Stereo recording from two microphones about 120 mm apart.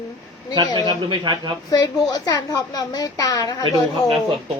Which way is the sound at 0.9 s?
40° right (ahead or behind).